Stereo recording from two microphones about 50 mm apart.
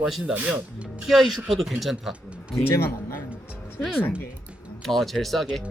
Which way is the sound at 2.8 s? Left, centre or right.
Left.